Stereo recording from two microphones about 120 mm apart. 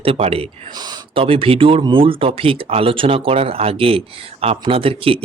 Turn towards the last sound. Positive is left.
turn(degrees=-50)  # may be behind; listen again after turning